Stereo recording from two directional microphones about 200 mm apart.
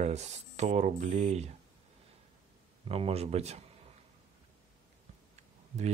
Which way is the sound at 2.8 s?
30° right (ahead or behind).